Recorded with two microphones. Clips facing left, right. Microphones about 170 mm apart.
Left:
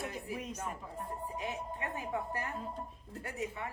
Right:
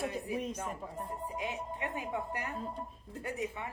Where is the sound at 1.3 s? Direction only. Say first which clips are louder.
Right 1 dB; 15° right (ahead or behind).